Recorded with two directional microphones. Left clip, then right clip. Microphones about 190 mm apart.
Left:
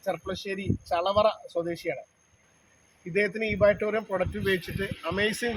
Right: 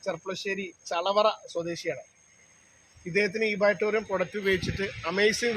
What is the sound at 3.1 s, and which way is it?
A man's voice, 15° right (ahead or behind).